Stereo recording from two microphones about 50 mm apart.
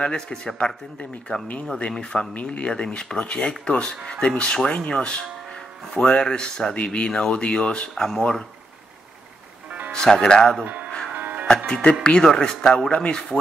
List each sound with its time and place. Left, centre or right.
0.0 s speech: centre
1.8 s speech: centre
7.9 s speech: centre
9.9 s speech: centre
10.6 s speech: right
11.1 s music: right
11.4 s music: centre
12.0 s speech: centre